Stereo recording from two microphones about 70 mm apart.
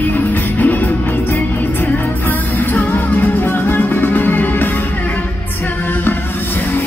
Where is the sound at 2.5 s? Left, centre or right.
Left.